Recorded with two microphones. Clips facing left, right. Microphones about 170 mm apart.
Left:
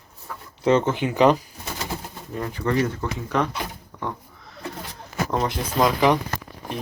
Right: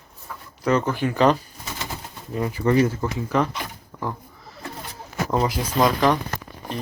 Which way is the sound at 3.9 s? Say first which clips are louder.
Right 1 dB; centre (ahead or behind).